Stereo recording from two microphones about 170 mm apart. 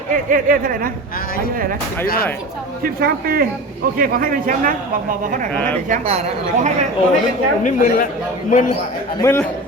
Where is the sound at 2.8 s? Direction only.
60° right (ahead or behind).